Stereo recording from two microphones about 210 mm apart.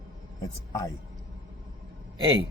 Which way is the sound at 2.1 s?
20° right (ahead or behind).